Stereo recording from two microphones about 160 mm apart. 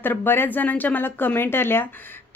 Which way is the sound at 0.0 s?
15° left (ahead or behind).